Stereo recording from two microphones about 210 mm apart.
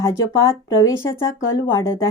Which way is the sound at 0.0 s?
15° left (ahead or behind).